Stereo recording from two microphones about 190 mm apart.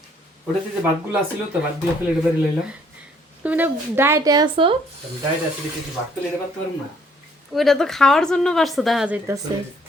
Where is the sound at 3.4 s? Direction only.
10° right (ahead or behind).